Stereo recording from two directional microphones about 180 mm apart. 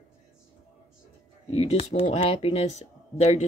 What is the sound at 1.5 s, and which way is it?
Speech, 35° left (ahead or behind).